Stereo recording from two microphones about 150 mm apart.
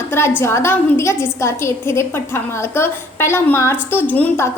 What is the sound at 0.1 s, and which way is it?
A woman's voice, 15° left (ahead or behind).